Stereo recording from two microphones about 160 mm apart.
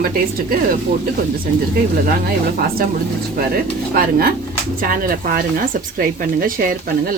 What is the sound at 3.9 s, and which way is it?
Speech, 70° right (ahead or behind).